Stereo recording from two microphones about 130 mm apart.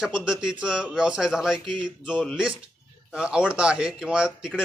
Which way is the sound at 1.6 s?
40° right (ahead or behind).